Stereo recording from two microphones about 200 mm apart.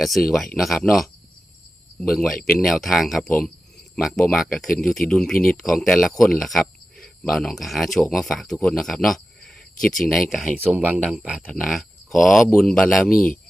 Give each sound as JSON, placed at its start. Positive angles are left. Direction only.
{"t": 0.0, "sound": "speech", "side_deg": 0}
{"t": 5.3, "sound": "speech", "side_deg": 45}
{"t": 5.6, "sound": "speech", "side_deg": 0}